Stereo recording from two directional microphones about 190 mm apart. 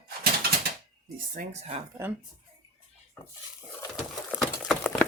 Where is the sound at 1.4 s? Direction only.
35° right (ahead or behind).